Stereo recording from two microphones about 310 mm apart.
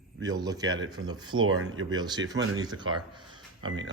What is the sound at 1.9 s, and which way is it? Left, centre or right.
Speech, centre.